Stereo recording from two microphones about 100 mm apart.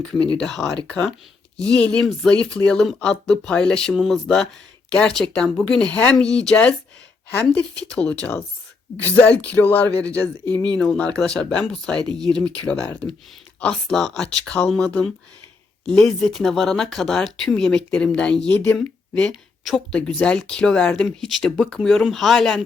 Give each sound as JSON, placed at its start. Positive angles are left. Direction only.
{"t": 0.3, "sound": "speech", "side_deg": 5}